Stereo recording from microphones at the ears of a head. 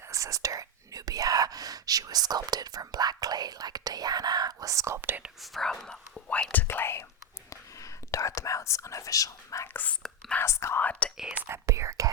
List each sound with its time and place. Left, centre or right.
0.1 s speech: right
6.2 s speech: left
11.4 s speech: right